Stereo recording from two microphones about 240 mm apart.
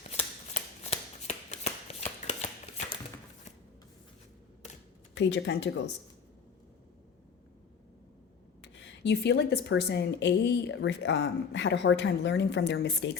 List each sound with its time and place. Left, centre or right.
0.2 s shuffling cards: left
5.1 s a woman's voice: left
8.6 s a woman's voice: left